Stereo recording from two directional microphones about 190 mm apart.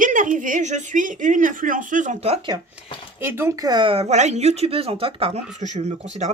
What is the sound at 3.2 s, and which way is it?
A woman's voice, 10° right (ahead or behind).